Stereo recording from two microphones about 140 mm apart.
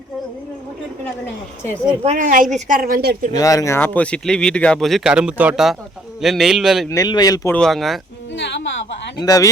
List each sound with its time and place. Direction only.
2.0 s a woman's voice: 70° right (ahead or behind)
3.3 s a man's voice: 25° left (ahead or behind); by 6.8 s centre (ahead or behind)
6.9 s speech: 25° left (ahead or behind)
7.5 s a man's voice: centre (ahead or behind)
9.1 s speech: 25° left (ahead or behind)